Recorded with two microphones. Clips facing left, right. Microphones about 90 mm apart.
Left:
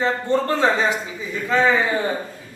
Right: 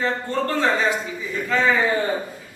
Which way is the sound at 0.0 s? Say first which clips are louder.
Left 3 dB; 20° left (ahead or behind).